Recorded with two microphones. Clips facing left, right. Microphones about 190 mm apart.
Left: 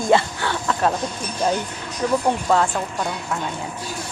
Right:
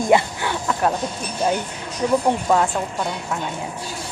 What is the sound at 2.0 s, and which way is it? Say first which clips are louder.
Speech: right 1 dB; 15° right (ahead or behind).